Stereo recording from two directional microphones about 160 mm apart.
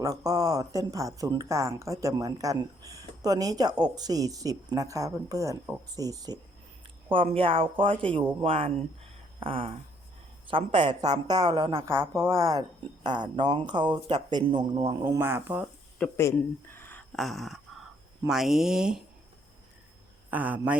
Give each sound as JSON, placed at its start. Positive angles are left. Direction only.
{"t": 0.0, "sound": "speech", "side_deg": -20}
{"t": 7.1, "sound": "speech", "side_deg": -35}
{"t": 11.9, "sound": "speech", "side_deg": -15}
{"t": 14.8, "sound": "speech", "side_deg": -15}
{"t": 16.0, "sound": "speech", "side_deg": 15}
{"t": 17.1, "sound": "a sound", "side_deg": 0}
{"t": 18.3, "sound": "speech", "side_deg": 0}
{"t": 20.3, "sound": "speech", "side_deg": -10}